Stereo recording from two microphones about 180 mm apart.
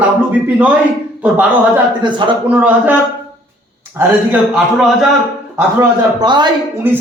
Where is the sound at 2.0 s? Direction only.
25° right (ahead or behind).